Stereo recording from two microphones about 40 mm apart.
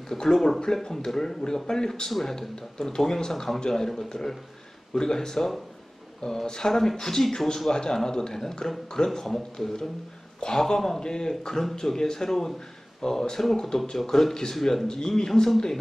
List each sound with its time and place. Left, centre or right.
0.1 s a man's voice: centre